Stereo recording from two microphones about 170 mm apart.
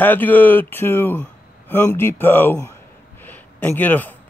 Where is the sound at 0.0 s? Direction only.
10° left (ahead or behind).